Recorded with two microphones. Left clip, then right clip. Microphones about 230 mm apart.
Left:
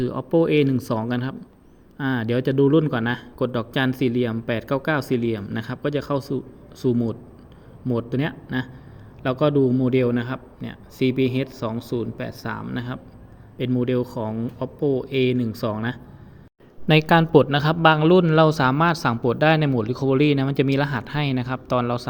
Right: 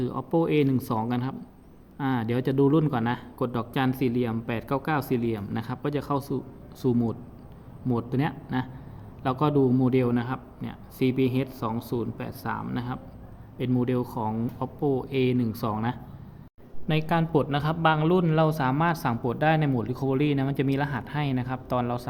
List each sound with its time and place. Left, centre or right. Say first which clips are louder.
0.0 s a man's voice: left 6 dB; centre
16.8 s a man's voice: left 9 dB; left